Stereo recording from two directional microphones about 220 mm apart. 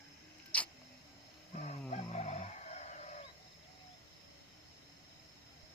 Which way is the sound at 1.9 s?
30° left (ahead or behind).